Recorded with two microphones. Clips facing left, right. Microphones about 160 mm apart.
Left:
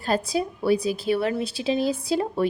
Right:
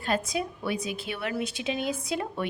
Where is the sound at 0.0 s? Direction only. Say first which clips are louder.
Left 4 dB; 35° left (ahead or behind).